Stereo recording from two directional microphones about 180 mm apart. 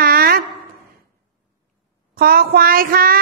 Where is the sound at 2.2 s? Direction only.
55° right (ahead or behind).